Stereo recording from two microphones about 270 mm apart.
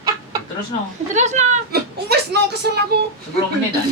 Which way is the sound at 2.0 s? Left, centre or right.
Right.